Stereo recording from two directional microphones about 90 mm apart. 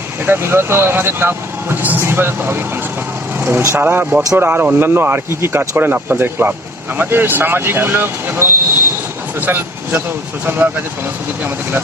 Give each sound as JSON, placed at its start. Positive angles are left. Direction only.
{"t": 0.3, "sound": "speech", "side_deg": -25}